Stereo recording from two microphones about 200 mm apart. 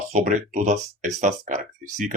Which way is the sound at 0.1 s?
40° right (ahead or behind).